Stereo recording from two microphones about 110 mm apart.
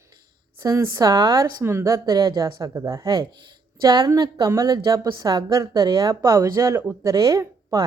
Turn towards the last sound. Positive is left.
turn(degrees=-30)  # may be behind; listen again after turning